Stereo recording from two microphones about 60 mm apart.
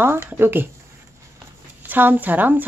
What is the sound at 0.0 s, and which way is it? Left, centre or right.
Speech, right.